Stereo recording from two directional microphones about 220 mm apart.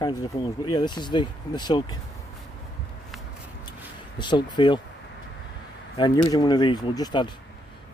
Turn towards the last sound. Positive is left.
turn(degrees=20)  # may be behind; listen again after turning